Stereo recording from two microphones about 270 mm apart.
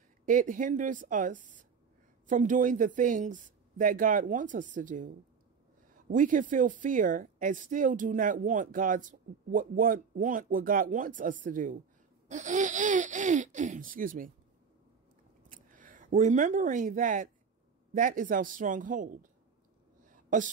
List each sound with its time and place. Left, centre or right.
0.2 s speech: right
15.5 s speech: right
20.0 s a sound: right